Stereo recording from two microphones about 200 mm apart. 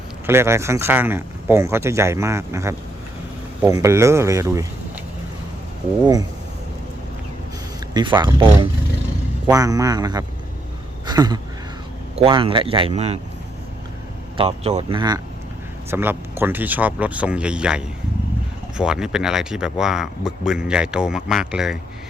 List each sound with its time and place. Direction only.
0.3 s speech: 15° right (ahead or behind)
7.9 s speech: 20° right (ahead or behind)
9.5 s speech: 15° right (ahead or behind)
11.0 s a sound: 20° right (ahead or behind)
12.2 s speech: 25° right (ahead or behind)
14.3 s speech: 30° right (ahead or behind)
15.9 s speech: 10° right (ahead or behind)